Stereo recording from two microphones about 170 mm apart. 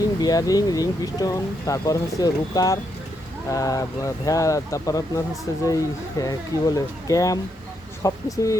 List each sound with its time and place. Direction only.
0.0 s speech: 20° left (ahead or behind)